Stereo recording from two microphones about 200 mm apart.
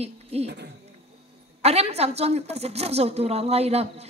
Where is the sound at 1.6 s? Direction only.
30° right (ahead or behind).